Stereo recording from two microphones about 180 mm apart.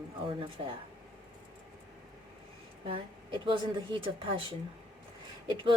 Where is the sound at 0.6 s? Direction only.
30° right (ahead or behind).